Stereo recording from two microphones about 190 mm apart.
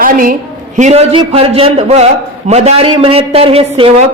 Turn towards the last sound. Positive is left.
turn(degrees=-30)  # may be behind; listen again after turning